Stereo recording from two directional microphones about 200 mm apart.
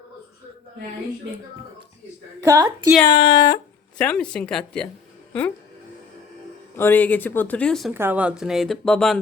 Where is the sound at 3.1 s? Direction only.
25° left (ahead or behind).